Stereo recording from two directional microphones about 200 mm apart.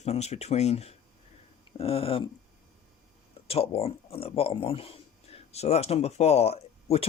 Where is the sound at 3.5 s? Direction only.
30° left (ahead or behind).